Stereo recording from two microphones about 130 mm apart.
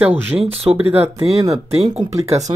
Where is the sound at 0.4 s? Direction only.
50° right (ahead or behind).